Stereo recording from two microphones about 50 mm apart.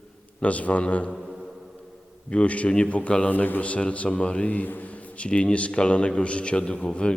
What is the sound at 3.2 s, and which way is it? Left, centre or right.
A man's voice, left.